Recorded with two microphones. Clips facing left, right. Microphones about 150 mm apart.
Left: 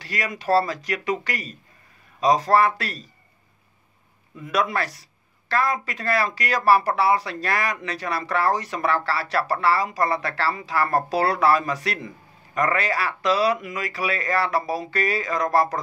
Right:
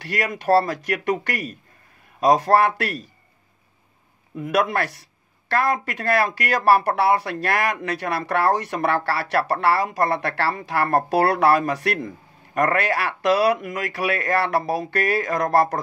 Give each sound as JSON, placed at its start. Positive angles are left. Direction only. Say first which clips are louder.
{"t": 0.0, "sound": "speech", "louder": "right 4 dB", "side_deg": -55}
{"t": 4.4, "sound": "speech", "louder": "right 3 dB", "side_deg": -55}